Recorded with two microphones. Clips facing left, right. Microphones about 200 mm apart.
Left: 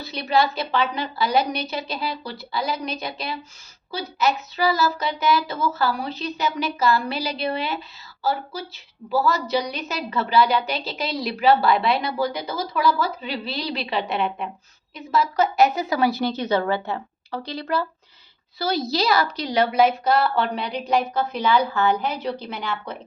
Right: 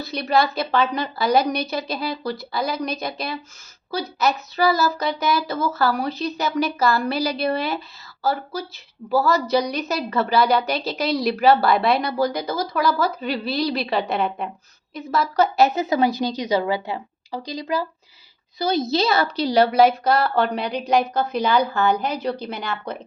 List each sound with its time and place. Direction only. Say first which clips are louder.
0.0 s a woman's voice: right 1 dB; 40° right (ahead or behind)